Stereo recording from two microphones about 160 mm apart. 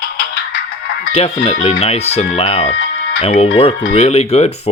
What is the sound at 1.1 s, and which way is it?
Speech, 40° left (ahead or behind).